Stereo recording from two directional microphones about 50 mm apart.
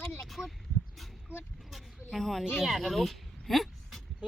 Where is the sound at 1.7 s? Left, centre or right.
Centre.